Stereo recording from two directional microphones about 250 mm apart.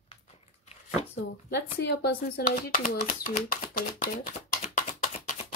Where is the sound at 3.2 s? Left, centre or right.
Left.